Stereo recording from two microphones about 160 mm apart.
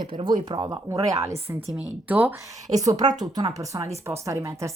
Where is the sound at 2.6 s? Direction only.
20° right (ahead or behind).